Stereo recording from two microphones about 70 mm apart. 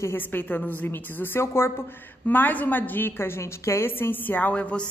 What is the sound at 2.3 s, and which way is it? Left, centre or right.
A woman's voice, left.